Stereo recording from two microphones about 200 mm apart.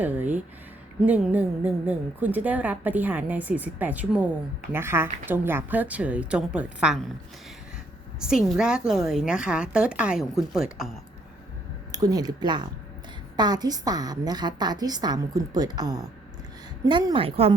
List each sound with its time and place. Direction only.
0.0 s a woman's voice: 10° right (ahead or behind)
8.4 s a woman's voice: 5° right (ahead or behind)
11.9 s a woman's voice: 20° right (ahead or behind)